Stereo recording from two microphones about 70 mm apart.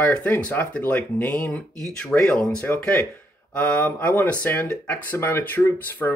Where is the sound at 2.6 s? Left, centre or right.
Left.